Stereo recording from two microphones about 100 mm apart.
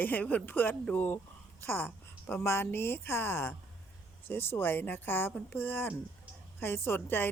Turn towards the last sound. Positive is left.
turn(degrees=20)  # may be behind; listen again after turning